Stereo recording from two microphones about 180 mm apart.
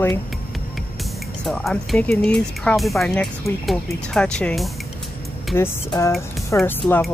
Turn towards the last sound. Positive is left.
turn(degrees=5)  # may be behind; listen again after turning